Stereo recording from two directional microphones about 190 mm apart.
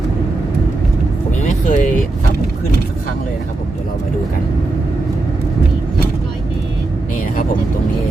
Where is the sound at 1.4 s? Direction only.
40° left (ahead or behind).